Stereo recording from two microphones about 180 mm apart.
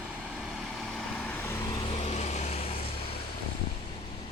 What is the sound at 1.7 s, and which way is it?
Vehicle, 30° left (ahead or behind).